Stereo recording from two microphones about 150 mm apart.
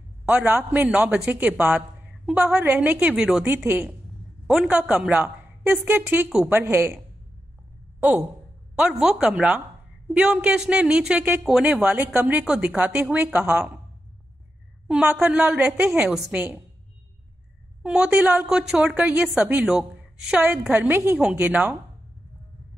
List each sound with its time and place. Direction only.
0.2 s a man's voice: 10° right (ahead or behind)
6.2 s a woman's voice: centre (ahead or behind)
6.5 s a man's voice: 15° right (ahead or behind)
8.7 s a man's voice: 5° right (ahead or behind)
15.0 s a man's voice: 10° right (ahead or behind)
17.8 s a man's voice: 5° right (ahead or behind)